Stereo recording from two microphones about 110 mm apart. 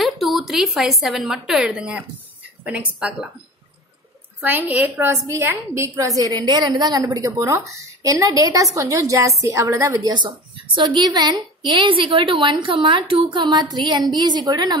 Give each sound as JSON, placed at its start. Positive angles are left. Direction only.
{"t": 0.0, "sound": "a woman's voice", "side_deg": 0}
{"t": 4.4, "sound": "a woman's voice", "side_deg": -15}